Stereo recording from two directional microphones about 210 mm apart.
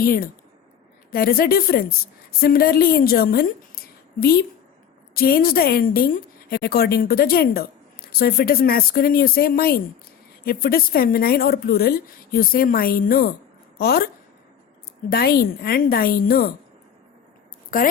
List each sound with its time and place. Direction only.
0.0 s a woman's voice: 45° left (ahead or behind)
15.1 s a woman's voice: 45° left (ahead or behind)